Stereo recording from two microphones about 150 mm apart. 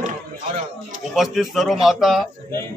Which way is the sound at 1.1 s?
Centre (ahead or behind).